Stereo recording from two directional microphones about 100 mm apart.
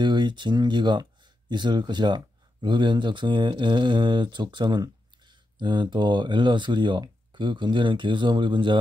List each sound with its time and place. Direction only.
0.0 s speech: 50° right (ahead or behind)